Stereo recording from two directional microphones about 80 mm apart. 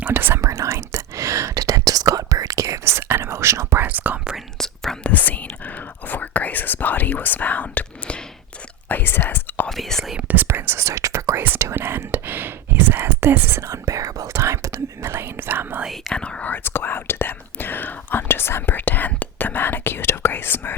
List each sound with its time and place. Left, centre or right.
0.0 s speech: right
0.4 s whispering: right
3.8 s whispering: right
4.5 s whispering: centre
5.0 s whispering: centre
9.6 s whispering: centre
10.2 s whispering: right
11.3 s whispering: right
13.7 s whispering: right
15.9 s whispering: centre
16.6 s whispering: left